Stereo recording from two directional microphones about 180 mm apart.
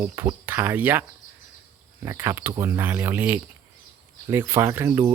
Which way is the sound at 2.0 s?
15° right (ahead or behind).